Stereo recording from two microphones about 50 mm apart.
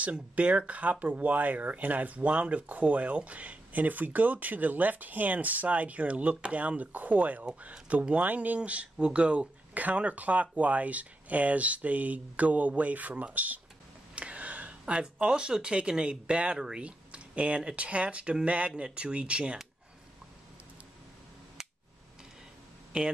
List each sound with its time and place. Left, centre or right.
0.0 s speech: right
16.5 s speech: centre
16.8 s speech: right
22.9 s speech: centre